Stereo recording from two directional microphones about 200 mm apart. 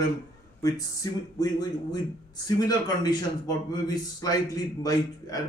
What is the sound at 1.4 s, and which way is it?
A man's voice, 20° left (ahead or behind).